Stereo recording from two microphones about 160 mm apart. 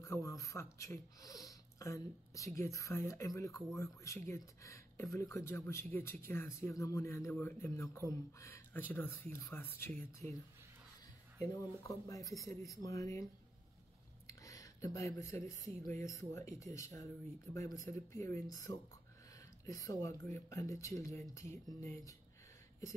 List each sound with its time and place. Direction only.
0.0 s speech: 20° left (ahead or behind)
11.6 s speech: 20° left (ahead or behind)
14.2 s a sound: 20° left (ahead or behind)
15.9 s speech: 20° left (ahead or behind)